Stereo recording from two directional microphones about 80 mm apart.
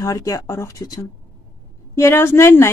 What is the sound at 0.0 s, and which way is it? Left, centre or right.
Speech, left.